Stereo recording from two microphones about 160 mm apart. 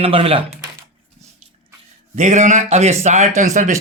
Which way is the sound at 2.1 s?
50° right (ahead or behind).